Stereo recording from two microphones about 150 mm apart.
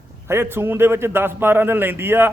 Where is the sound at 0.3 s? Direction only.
15° right (ahead or behind).